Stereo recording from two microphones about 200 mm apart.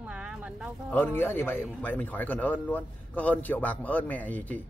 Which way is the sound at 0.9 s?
10° left (ahead or behind).